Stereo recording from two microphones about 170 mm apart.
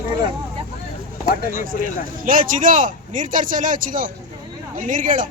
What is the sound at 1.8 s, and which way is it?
Speech, 50° right (ahead or behind).